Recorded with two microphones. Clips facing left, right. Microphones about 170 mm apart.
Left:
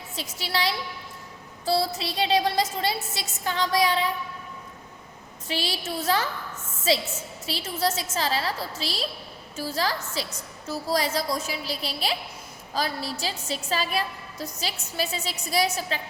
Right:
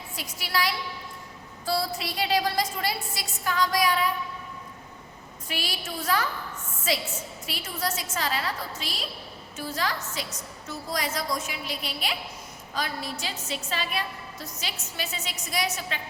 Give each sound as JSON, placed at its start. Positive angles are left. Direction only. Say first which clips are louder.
{"t": 0.2, "sound": "a woman's voice", "louder": "left 1 dB", "side_deg": 25}
{"t": 5.5, "sound": "a woman's voice", "louder": "left 4 dB", "side_deg": 25}